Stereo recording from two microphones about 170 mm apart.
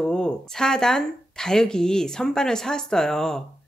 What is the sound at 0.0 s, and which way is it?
Speech, 5° left (ahead or behind).